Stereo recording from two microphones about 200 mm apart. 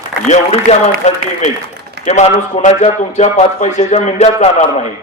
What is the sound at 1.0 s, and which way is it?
A man's voice, 35° left (ahead or behind).